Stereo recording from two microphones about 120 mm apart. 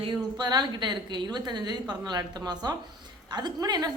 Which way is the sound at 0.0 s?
40° right (ahead or behind).